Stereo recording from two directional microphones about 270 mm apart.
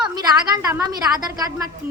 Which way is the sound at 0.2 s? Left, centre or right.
Centre.